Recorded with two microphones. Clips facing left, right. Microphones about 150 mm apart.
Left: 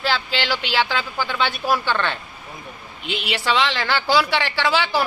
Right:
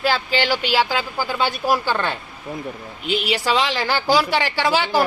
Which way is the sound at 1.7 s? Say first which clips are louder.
Right 1 dB; 10° right (ahead or behind).